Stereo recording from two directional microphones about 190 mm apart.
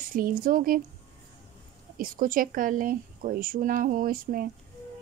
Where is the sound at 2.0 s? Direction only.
45° right (ahead or behind).